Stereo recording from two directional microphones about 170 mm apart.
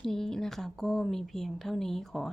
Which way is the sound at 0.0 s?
5° left (ahead or behind).